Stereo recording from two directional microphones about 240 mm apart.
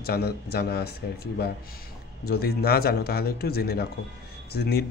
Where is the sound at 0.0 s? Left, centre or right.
Left.